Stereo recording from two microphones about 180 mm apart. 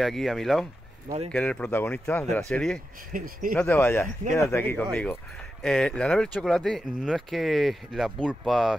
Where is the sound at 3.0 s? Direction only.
50° right (ahead or behind).